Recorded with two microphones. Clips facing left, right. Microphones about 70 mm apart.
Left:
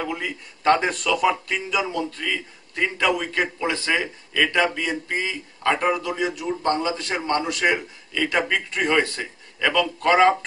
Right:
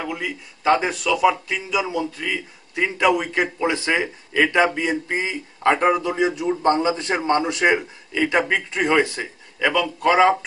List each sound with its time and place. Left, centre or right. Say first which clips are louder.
0.0 s speech: even; centre